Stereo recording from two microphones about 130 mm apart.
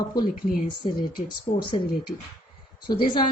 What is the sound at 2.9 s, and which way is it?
Speech, 35° left (ahead or behind).